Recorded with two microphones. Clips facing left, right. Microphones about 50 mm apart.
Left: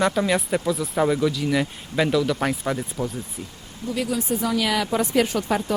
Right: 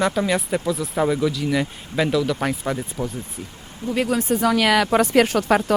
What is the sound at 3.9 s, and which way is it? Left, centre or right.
Speech, right.